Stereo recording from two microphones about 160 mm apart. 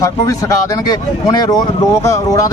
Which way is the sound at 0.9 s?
25° left (ahead or behind).